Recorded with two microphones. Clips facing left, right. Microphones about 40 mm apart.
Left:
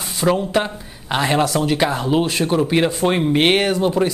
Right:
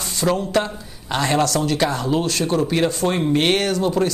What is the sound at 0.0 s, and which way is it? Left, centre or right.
Speech, centre.